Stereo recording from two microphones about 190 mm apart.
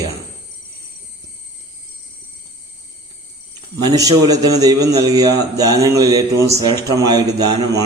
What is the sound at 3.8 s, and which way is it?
A man's voice, 20° right (ahead or behind).